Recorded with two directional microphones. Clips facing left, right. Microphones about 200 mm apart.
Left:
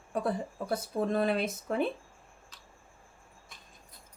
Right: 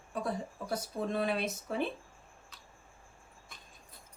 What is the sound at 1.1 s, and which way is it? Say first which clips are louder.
Speech: left 3 dB; 50° left (ahead or behind).